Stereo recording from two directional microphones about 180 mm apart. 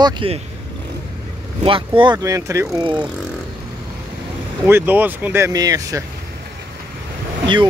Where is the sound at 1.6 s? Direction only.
30° right (ahead or behind).